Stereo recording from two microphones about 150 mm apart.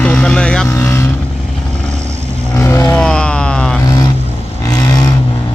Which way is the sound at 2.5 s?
20° left (ahead or behind).